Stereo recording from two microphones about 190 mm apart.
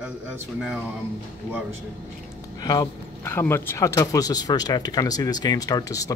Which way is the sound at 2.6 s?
20° left (ahead or behind).